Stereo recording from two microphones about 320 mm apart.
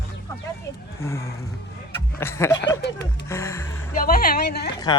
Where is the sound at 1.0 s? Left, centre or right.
Centre.